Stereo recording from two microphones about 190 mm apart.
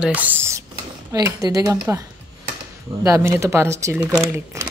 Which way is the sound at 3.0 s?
15° right (ahead or behind).